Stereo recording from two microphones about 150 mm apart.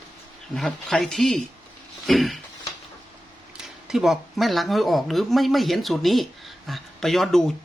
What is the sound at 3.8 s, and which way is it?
Speech, centre (ahead or behind).